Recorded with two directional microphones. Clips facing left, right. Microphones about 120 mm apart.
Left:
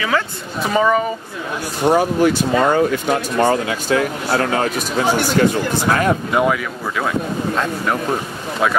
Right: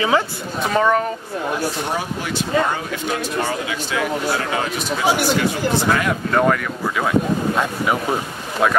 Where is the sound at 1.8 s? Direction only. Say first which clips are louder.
Left 10 dB; 45° left (ahead or behind).